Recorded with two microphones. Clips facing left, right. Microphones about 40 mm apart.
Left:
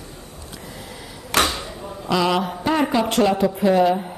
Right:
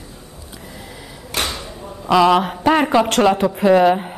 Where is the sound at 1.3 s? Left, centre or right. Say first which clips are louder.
Left 4 dB; left.